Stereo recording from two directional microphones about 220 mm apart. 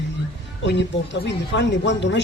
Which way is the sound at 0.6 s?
55° left (ahead or behind).